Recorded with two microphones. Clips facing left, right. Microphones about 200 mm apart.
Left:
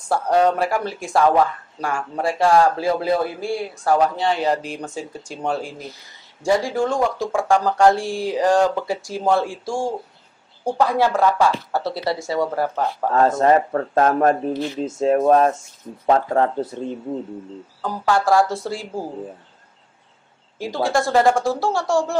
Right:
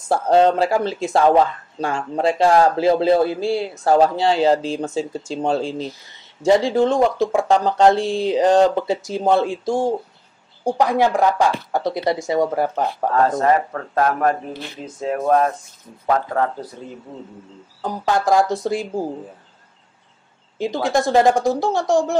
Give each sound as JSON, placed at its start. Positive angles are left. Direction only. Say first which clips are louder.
{"t": 0.1, "sound": "speech", "louder": "right 3 dB", "side_deg": -25}
{"t": 13.1, "sound": "a man's voice", "louder": "left 2 dB", "side_deg": 25}
{"t": 17.8, "sound": "speech", "louder": "even", "side_deg": -20}
{"t": 20.5, "sound": "speech", "louder": "right 1 dB", "side_deg": -20}